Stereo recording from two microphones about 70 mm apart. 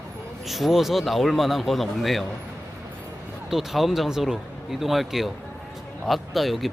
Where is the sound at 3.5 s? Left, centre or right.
Centre.